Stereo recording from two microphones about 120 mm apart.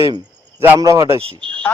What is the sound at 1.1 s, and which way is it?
Speech, 50° right (ahead or behind).